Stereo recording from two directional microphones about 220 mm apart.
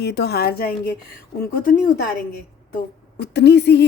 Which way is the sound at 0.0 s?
50° left (ahead or behind).